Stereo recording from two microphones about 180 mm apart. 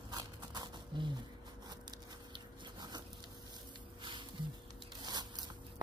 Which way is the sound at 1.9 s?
25° right (ahead or behind).